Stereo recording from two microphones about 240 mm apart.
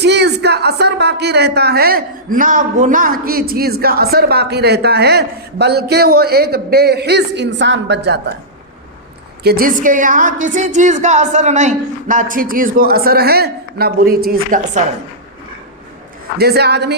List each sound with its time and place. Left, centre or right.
0.0 s a sound: right
0.4 s a man's voice: right
9.4 s a woman's voice: right
16.4 s a man's voice: right